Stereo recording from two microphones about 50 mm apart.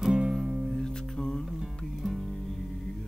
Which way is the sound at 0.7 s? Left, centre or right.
Centre.